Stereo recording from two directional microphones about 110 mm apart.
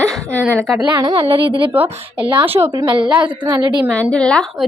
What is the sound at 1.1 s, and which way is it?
Speech, 55° right (ahead or behind).